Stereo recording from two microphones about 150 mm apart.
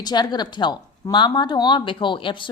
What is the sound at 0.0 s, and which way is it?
A woman's voice, 25° left (ahead or behind).